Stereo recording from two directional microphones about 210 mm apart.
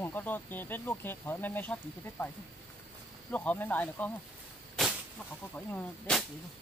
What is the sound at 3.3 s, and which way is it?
Speech, 5° left (ahead or behind).